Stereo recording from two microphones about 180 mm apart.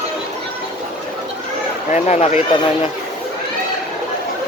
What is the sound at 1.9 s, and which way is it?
Speech, 40° left (ahead or behind).